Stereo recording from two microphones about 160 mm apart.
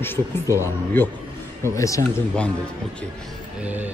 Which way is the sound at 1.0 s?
15° left (ahead or behind).